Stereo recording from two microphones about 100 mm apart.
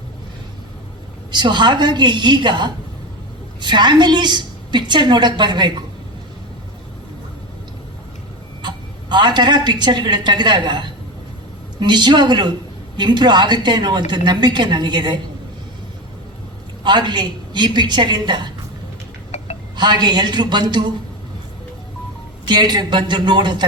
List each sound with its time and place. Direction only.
1.3 s a woman's voice: 50° right (ahead or behind)
8.6 s a woman's voice: 50° right (ahead or behind)
16.8 s a woman's voice: 50° right (ahead or behind)
19.7 s a woman's voice: 50° right (ahead or behind)
22.4 s a woman's voice: 45° right (ahead or behind)